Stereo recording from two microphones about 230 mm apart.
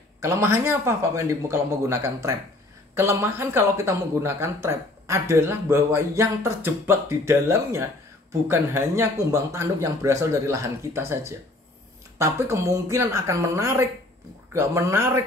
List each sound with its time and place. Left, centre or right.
0.2 s speech: centre